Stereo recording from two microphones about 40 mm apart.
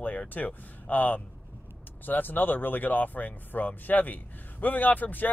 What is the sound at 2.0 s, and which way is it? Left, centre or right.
Speech, left.